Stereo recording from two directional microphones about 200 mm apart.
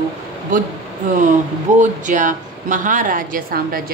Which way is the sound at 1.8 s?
40° right (ahead or behind).